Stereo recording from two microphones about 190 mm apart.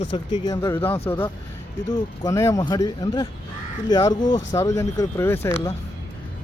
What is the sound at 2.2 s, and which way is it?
Speech, 15° left (ahead or behind).